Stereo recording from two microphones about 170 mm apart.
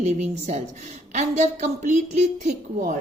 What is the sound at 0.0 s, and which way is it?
A woman's voice, 45° right (ahead or behind).